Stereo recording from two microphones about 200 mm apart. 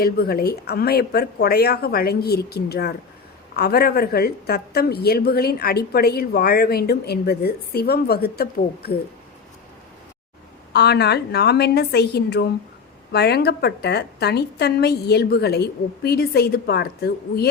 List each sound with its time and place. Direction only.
0.0 s a woman's voice: 50° left (ahead or behind)
10.7 s a woman's voice: 55° left (ahead or behind)